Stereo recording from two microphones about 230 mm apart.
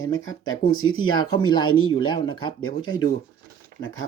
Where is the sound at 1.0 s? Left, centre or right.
Centre.